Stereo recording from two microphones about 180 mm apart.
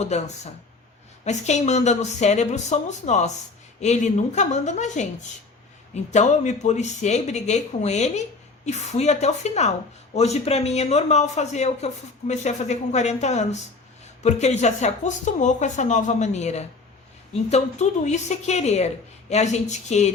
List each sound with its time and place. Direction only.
0.0 s speech: 40° left (ahead or behind)